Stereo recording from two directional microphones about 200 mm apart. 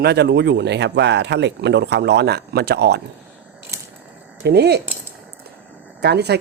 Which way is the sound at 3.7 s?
15° right (ahead or behind).